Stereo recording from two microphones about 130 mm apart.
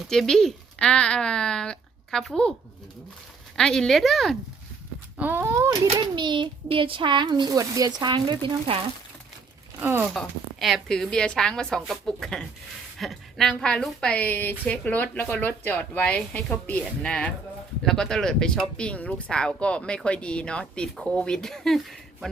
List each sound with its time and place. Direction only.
0.1 s speech: 5° left (ahead or behind)
3.5 s speech: 5° left (ahead or behind)
5.1 s speech: 15° right (ahead or behind)
6.0 s a child's voice: 35° right (ahead or behind)
9.8 s speech: 15° right (ahead or behind)
10.2 s speech: centre (ahead or behind)